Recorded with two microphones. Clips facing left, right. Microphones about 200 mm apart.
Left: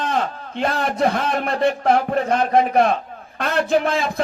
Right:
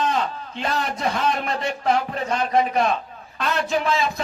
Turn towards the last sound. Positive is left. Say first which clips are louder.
# left 4 dB
turn(degrees=55)  # may be behind; listen again after turning